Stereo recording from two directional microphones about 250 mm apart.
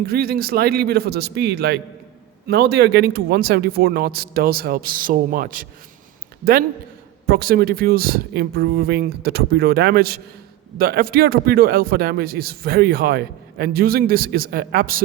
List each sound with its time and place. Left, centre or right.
0.1 s speech: right